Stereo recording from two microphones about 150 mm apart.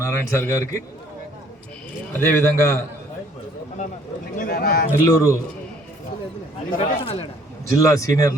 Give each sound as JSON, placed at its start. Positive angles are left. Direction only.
{"t": 0.0, "sound": "a man's voice", "side_deg": 20}
{"t": 2.1, "sound": "a man's voice", "side_deg": 20}
{"t": 4.4, "sound": "speech", "side_deg": 85}
{"t": 5.0, "sound": "a man's voice", "side_deg": 20}
{"t": 6.7, "sound": "speech", "side_deg": 40}
{"t": 7.7, "sound": "a man's voice", "side_deg": 20}